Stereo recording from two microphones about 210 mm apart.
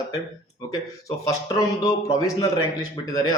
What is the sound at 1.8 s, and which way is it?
Speech, 15° left (ahead or behind).